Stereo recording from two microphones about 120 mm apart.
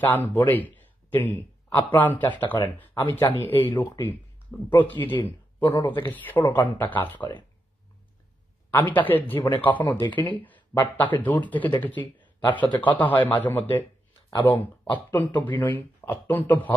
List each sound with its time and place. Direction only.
0.0 s a man's voice: 15° left (ahead or behind)
8.7 s a man's voice: 15° left (ahead or behind)
12.6 s a man's voice: 40° left (ahead or behind)
12.9 s speech: 15° left (ahead or behind)